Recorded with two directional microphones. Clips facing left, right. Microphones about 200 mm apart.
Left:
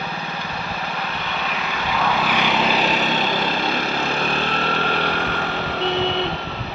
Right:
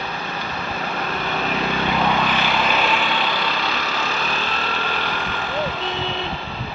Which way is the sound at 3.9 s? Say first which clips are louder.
Left 3 dB; 55° left (ahead or behind).